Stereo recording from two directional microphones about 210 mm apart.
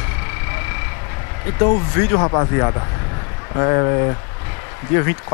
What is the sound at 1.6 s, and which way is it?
Speech, 20° left (ahead or behind).